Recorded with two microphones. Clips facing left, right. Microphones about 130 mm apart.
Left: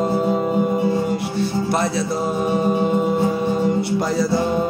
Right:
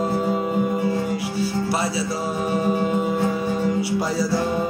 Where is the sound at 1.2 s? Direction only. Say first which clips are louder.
Left 2 dB; 5° right (ahead or behind).